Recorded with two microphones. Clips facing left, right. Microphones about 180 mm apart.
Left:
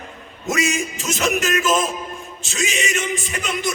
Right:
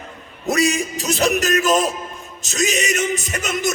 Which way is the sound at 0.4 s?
35° right (ahead or behind).